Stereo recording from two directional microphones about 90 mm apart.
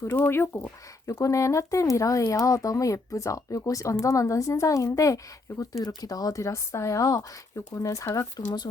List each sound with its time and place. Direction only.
0.2 s speech: 25° left (ahead or behind)
1.2 s speech: 35° left (ahead or behind)